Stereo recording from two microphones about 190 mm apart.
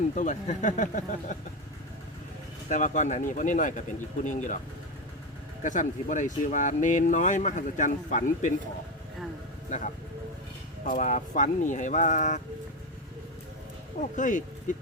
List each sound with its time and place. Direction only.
0.2 s speech: 40° left (ahead or behind)
2.6 s speech: 40° left (ahead or behind)
5.6 s speech: 40° left (ahead or behind)
9.6 s speech: 40° left (ahead or behind)
10.9 s speech: 40° left (ahead or behind)
14.0 s speech: 40° left (ahead or behind)